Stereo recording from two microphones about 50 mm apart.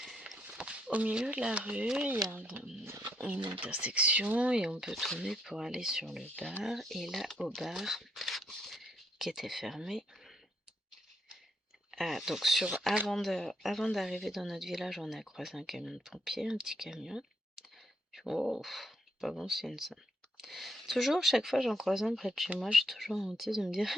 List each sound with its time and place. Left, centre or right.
0.5 s a sound: centre
1.3 s speech: right
3.1 s speech: right
4.8 s speech: centre
11.9 s speech: centre